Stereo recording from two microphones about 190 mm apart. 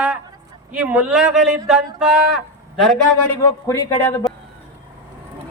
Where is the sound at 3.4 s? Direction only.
15° left (ahead or behind).